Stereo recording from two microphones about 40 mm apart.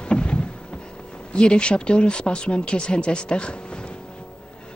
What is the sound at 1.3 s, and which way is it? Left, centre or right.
Speech, left.